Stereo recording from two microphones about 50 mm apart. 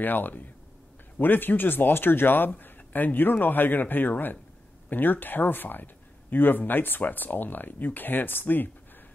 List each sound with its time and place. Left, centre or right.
0.0 s speech: left